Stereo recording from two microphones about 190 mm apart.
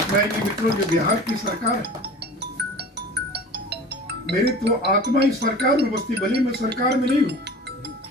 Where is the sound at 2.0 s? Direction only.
60° right (ahead or behind).